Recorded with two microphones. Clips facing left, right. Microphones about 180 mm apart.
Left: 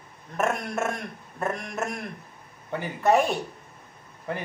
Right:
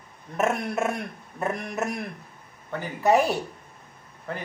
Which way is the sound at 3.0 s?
5° right (ahead or behind).